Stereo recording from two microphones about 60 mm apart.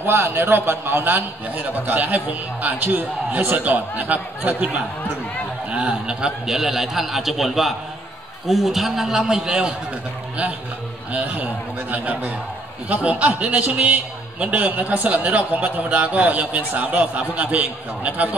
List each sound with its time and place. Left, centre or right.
0.0 s a man's voice: right
5.7 s a man's voice: centre
11.1 s a man's voice: right